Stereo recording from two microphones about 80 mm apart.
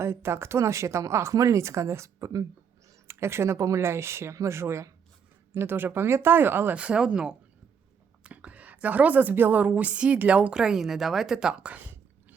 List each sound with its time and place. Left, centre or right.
0.0 s a woman's voice: right
3.1 s a woman's voice: right
6.7 s a woman's voice: centre